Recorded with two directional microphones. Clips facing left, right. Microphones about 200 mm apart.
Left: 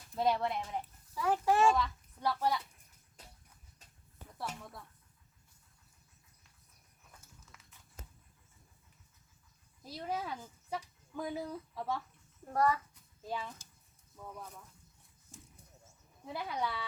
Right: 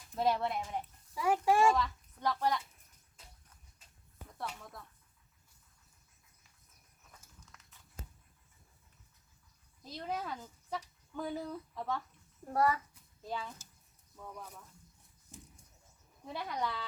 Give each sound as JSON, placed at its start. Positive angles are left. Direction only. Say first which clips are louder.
{"t": 0.1, "sound": "speech", "louder": "even", "side_deg": 0}
{"t": 1.1, "sound": "a sound", "louder": "right 1 dB", "side_deg": -10}
{"t": 1.7, "sound": "a woman's voice", "louder": "even", "side_deg": 5}
{"t": 7.5, "sound": "a sound", "louder": "left 1 dB", "side_deg": 5}
{"t": 9.8, "sound": "a sound", "louder": "left 1 dB", "side_deg": 10}
{"t": 12.5, "sound": "a child's voice", "louder": "even", "side_deg": -10}
{"t": 13.2, "sound": "speech", "louder": "even", "side_deg": 5}
{"t": 15.3, "sound": "goat", "louder": "right 2 dB", "side_deg": -15}
{"t": 16.2, "sound": "speech", "louder": "even", "side_deg": 5}